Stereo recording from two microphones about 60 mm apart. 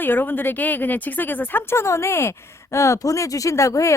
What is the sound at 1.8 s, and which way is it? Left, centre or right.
Speech, left.